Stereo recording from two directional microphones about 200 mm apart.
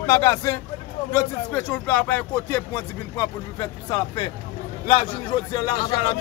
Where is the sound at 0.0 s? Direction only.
15° left (ahead or behind).